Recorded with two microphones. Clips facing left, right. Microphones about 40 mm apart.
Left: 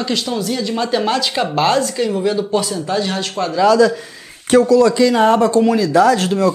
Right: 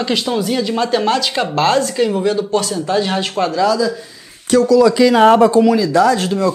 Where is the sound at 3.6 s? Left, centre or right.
Left.